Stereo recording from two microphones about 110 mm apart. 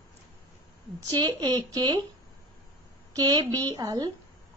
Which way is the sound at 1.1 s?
40° right (ahead or behind).